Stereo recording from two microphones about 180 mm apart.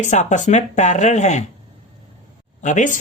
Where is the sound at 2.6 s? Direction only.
40° left (ahead or behind).